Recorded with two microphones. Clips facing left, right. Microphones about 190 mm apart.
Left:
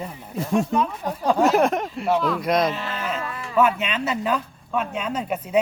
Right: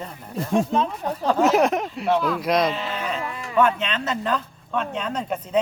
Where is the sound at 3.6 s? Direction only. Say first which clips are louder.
Even; 10° left (ahead or behind).